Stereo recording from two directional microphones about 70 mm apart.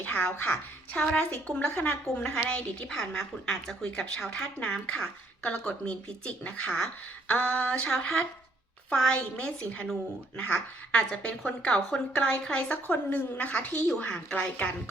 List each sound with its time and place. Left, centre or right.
0.0 s a woman's voice: left
7.3 s a woman's voice: left; by 9.4 s centre
9.4 s a woman's voice: centre